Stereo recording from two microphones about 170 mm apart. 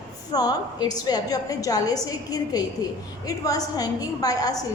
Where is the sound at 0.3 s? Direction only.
25° left (ahead or behind).